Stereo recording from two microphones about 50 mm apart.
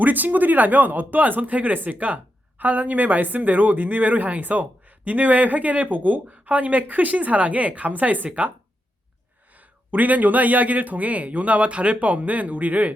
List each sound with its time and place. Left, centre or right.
0.0 s speech: right